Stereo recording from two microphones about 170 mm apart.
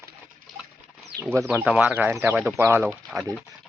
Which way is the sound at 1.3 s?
15° right (ahead or behind).